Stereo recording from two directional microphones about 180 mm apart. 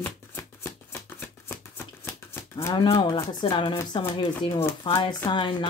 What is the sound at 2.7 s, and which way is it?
Speech, 25° left (ahead or behind).